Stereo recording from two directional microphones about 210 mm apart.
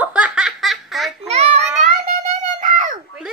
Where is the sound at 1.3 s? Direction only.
30° right (ahead or behind).